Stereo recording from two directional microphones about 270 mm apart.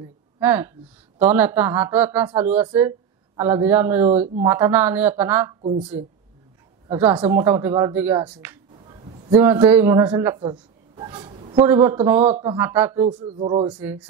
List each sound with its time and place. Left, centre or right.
0.4 s speech: centre
4.1 s speech: right
4.5 s speech: centre
6.9 s speech: centre
8.8 s a sound: centre
9.4 s a man's voice: centre
11.6 s speech: centre
13.2 s speech: centre
13.7 s speech: centre